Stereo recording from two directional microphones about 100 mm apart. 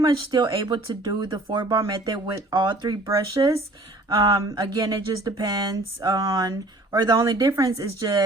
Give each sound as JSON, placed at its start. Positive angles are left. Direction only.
{"t": 0.0, "sound": "speech", "side_deg": -50}
{"t": 4.1, "sound": "speech", "side_deg": -50}